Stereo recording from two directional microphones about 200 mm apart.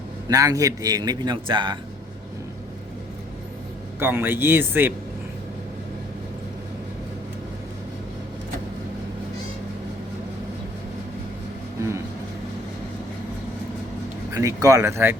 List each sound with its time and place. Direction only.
0.3 s a man's voice: 15° right (ahead or behind)
4.0 s a man's voice: 10° right (ahead or behind)
14.3 s a man's voice: 15° right (ahead or behind)